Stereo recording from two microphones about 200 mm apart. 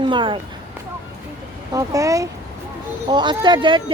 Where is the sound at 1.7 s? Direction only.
15° right (ahead or behind).